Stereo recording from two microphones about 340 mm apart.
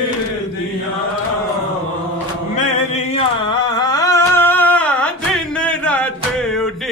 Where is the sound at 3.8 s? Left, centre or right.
Centre.